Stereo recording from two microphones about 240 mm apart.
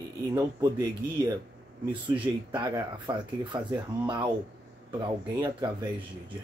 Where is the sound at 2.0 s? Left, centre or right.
Centre.